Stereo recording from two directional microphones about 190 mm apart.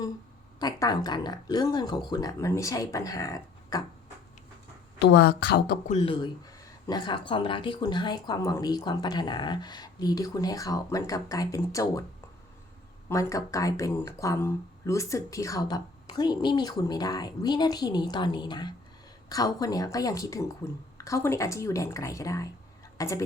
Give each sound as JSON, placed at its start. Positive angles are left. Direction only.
{"t": 0.6, "sound": "speech", "side_deg": 20}
{"t": 4.9, "sound": "speech", "side_deg": 60}
{"t": 5.9, "sound": "speech", "side_deg": 30}
{"t": 13.1, "sound": "a woman's voice", "side_deg": 15}